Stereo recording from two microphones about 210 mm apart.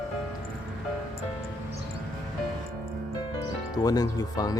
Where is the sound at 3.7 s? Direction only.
20° left (ahead or behind).